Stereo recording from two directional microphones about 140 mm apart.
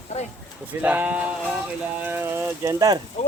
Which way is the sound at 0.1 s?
55° left (ahead or behind).